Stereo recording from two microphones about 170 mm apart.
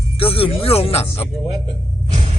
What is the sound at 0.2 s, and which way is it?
Speech, 35° left (ahead or behind).